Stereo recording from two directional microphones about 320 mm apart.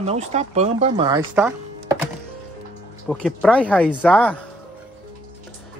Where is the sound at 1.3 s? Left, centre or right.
Centre.